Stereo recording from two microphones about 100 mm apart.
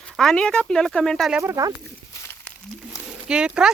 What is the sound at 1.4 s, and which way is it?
Speech, 30° right (ahead or behind).